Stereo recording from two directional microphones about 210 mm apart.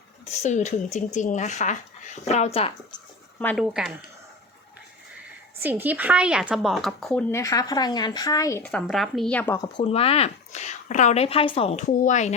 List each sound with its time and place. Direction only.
0.3 s speech: 35° left (ahead or behind)
3.4 s speech: centre (ahead or behind)
5.6 s speech: 10° right (ahead or behind); by 9.6 s 10° left (ahead or behind)
9.7 s speech: 30° left (ahead or behind)